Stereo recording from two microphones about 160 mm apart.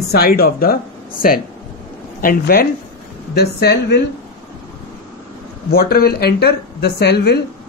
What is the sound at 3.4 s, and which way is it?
Speech, 90° left.